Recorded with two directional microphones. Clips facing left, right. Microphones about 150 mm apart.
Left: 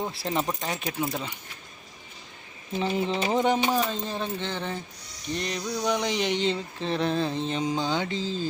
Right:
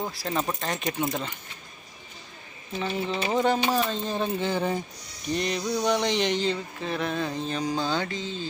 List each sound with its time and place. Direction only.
0.1 s speech: 25° left (ahead or behind); by 1.3 s centre (ahead or behind)
2.7 s mantra: 20° left (ahead or behind)
3.8 s speech: 5° left (ahead or behind)
6.3 s mantra: 25° left (ahead or behind)
8.2 s speech: 35° left (ahead or behind)